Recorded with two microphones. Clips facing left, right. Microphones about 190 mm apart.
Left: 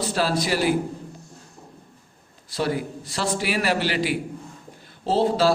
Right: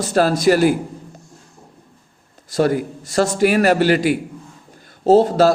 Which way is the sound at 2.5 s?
45° right (ahead or behind).